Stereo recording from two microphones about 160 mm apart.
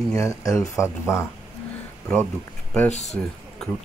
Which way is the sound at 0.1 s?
20° left (ahead or behind).